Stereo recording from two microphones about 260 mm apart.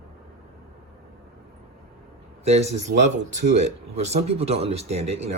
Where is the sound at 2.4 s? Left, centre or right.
Right.